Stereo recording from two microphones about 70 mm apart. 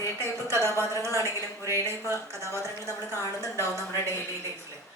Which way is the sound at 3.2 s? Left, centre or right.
Left.